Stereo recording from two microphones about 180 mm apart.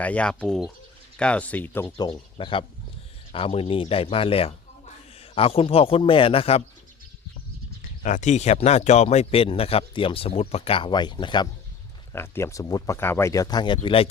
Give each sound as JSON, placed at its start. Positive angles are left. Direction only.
{"t": 0.0, "sound": "speech", "side_deg": 5}
{"t": 2.0, "sound": "speech", "side_deg": 30}
{"t": 8.0, "sound": "speech", "side_deg": 45}
{"t": 12.1, "sound": "speech", "side_deg": 15}